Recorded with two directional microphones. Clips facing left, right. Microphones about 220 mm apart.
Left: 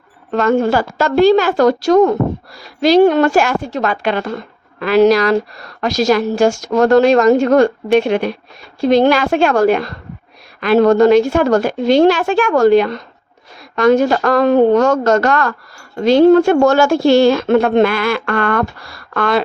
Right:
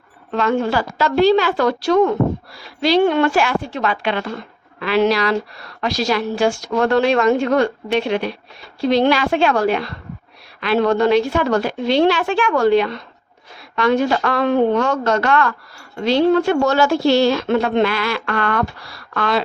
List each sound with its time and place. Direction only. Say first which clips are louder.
0.3 s a woman's voice: left 5 dB; 45° left (ahead or behind)